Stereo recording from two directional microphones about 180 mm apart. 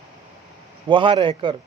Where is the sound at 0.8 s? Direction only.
30° right (ahead or behind).